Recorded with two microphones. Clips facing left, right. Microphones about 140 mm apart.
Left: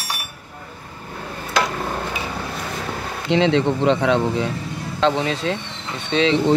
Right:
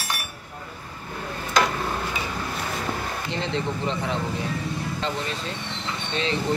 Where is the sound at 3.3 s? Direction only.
85° left.